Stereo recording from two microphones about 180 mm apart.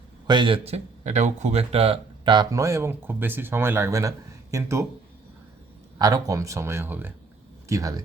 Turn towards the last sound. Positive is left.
turn(degrees=-20)  # may be behind; listen again after turning